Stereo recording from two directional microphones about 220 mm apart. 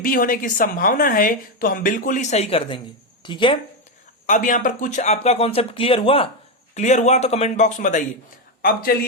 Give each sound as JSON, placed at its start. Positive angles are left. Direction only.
{"t": 0.0, "sound": "speech", "side_deg": 40}
{"t": 4.3, "sound": "speech", "side_deg": 35}